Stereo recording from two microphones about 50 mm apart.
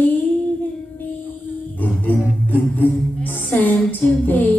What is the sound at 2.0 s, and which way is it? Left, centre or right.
Music, left.